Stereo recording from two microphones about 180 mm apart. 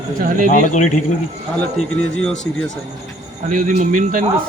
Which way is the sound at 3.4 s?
45° right (ahead or behind).